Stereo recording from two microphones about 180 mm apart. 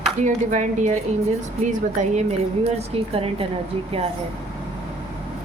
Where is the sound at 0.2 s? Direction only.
40° right (ahead or behind).